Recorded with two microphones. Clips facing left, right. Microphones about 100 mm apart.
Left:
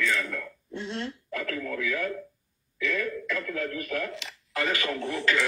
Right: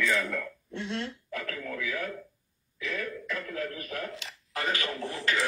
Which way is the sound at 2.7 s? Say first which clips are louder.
Left 5 dB; 50° left (ahead or behind).